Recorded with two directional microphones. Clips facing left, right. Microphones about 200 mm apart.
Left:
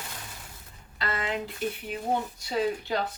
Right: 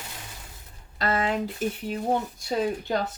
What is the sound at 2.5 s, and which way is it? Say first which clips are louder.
Speech: right 2 dB; 45° right (ahead or behind).